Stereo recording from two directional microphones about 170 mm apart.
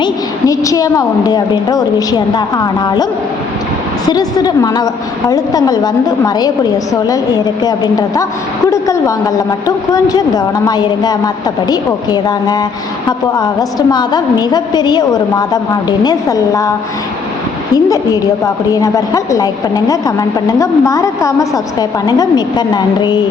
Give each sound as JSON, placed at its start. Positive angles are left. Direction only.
{"t": 0.0, "sound": "a woman's voice", "side_deg": 20}
{"t": 4.0, "sound": "a woman's voice", "side_deg": 25}
{"t": 17.7, "sound": "a woman's voice", "side_deg": 20}